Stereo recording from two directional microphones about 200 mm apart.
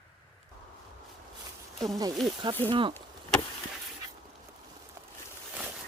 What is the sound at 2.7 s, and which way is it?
Speech, 25° right (ahead or behind).